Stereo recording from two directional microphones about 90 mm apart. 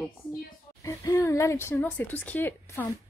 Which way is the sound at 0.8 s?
40° left (ahead or behind).